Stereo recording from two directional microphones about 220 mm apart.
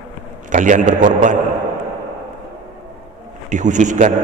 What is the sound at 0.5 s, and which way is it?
Speech, 35° right (ahead or behind).